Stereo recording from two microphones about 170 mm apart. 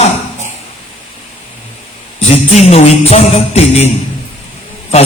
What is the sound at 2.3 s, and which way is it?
Music, 40° left (ahead or behind).